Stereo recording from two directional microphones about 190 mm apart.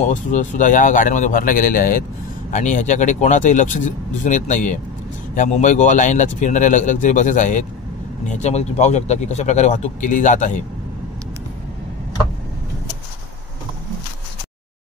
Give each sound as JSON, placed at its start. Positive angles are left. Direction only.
{"t": 0.0, "sound": "speech", "side_deg": 40}